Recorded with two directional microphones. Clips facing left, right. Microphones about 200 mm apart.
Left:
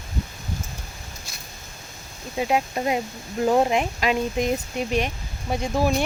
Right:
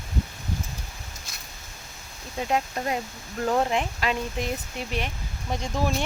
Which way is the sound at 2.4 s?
10° left (ahead or behind).